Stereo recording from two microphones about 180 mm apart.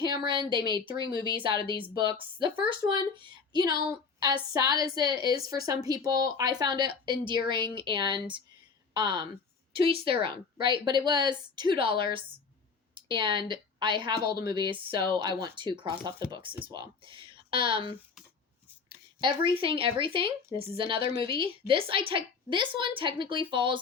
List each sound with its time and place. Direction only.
0.3 s a woman's voice: 25° right (ahead or behind)